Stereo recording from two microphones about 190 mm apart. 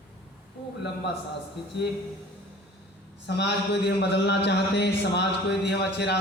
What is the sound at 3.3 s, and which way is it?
Speech, 65° left (ahead or behind).